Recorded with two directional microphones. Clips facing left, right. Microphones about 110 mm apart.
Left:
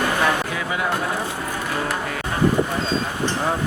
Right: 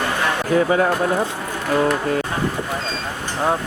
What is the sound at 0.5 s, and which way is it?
Speech, 40° right (ahead or behind).